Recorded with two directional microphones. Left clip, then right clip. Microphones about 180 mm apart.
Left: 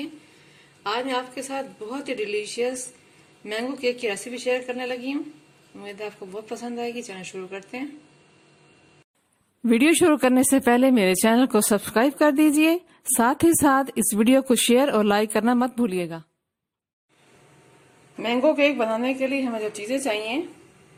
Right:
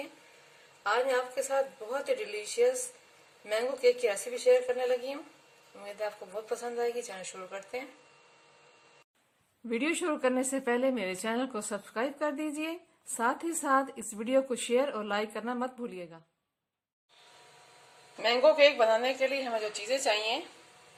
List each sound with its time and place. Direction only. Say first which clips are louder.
0.9 s a woman's voice: left 2 dB; centre (ahead or behind)
6.6 s a woman's voice: left 2 dB; centre (ahead or behind)
9.6 s speech: left 13 dB; 60° left (ahead or behind)
18.2 s a woman's voice: left 2 dB; centre (ahead or behind)